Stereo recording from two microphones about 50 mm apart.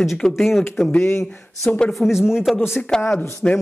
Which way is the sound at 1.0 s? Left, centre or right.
Left.